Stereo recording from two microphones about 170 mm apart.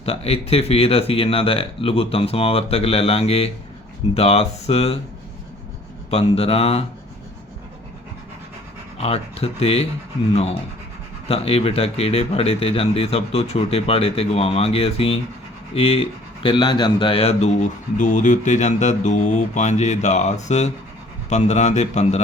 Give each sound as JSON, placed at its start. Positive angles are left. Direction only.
{"t": 0.0, "sound": "speech", "side_deg": 35}
{"t": 6.1, "sound": "speech", "side_deg": 35}
{"t": 9.0, "sound": "a man's voice", "side_deg": 35}